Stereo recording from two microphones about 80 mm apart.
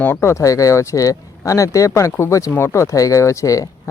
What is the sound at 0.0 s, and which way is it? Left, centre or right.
Speech, left.